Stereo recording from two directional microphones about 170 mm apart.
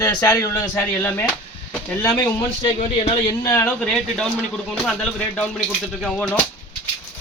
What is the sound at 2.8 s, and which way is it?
Speech, 35° left (ahead or behind).